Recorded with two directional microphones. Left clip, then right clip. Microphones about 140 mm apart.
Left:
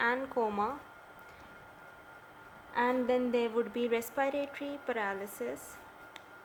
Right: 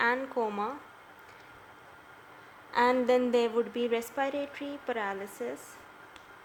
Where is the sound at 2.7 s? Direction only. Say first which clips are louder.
Right 5 dB; 40° right (ahead or behind).